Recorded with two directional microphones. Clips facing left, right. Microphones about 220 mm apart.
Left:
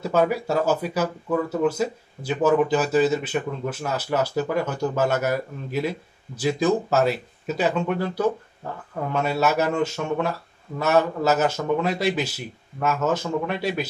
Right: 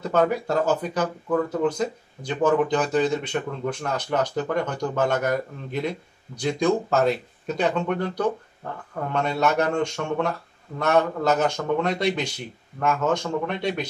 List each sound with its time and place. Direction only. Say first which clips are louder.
0.0 s speech: even; 5° left (ahead or behind)